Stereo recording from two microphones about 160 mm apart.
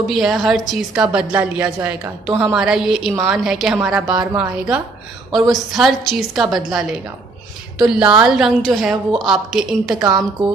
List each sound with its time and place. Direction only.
0.1 s a woman's voice: centre (ahead or behind)
4.1 s speech: 25° right (ahead or behind)
4.4 s a woman's voice: 5° right (ahead or behind)